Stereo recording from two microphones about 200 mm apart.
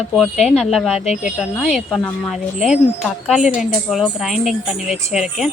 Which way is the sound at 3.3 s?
35° left (ahead or behind).